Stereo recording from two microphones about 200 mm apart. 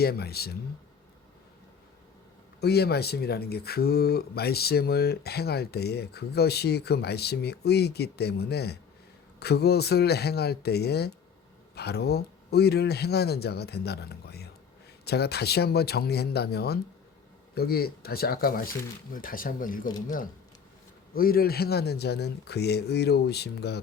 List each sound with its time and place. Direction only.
0.0 s speech: 50° left (ahead or behind)
2.6 s speech: 55° left (ahead or behind)
21.1 s speech: 50° left (ahead or behind)